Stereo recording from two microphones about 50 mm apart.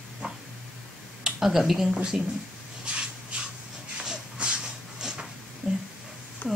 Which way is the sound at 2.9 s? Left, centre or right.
Centre.